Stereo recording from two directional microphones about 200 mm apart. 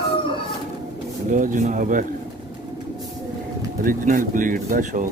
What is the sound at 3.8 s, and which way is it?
Speech, 40° right (ahead or behind).